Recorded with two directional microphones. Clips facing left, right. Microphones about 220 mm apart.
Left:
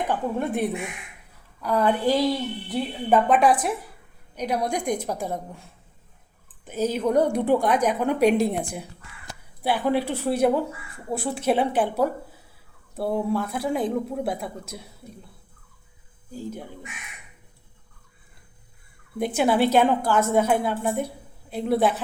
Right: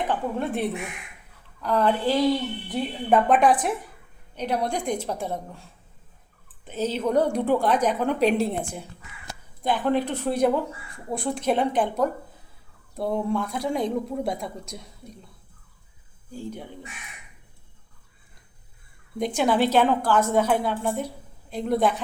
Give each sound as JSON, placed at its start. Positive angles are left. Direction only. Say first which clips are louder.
{"t": 0.1, "sound": "a woman's voice", "louder": "left 1 dB", "side_deg": 15}
{"t": 6.7, "sound": "a woman's voice", "louder": "left 2 dB", "side_deg": 10}
{"t": 9.6, "sound": "a woman's voice", "louder": "even", "side_deg": 10}
{"t": 19.2, "sound": "a woman's voice", "louder": "left 1 dB", "side_deg": 5}